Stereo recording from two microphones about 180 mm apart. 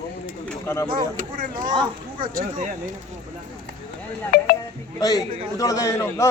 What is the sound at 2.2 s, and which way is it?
Speech, 50° right (ahead or behind).